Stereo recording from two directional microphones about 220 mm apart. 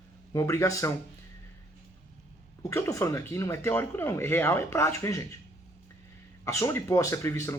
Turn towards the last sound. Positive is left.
turn(degrees=10)  # may be behind; listen again after turning